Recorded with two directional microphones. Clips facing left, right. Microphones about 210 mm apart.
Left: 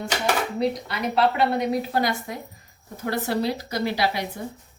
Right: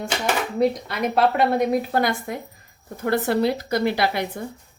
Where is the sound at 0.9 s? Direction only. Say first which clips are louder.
Right 2 dB; 50° right (ahead or behind).